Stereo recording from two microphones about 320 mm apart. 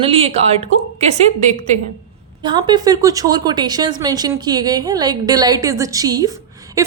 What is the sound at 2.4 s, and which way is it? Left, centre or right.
A woman's voice, centre.